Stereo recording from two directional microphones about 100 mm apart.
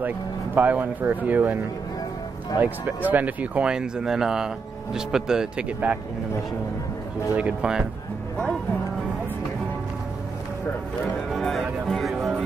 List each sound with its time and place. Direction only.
0.6 s speech: 15° right (ahead or behind)
2.6 s speech: 15° right (ahead or behind)
7.3 s speech: 10° right (ahead or behind)
11.2 s speech: centre (ahead or behind)
11.9 s music: centre (ahead or behind)